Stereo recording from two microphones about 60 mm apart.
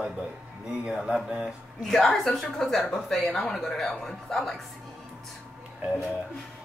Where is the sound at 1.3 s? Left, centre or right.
Centre.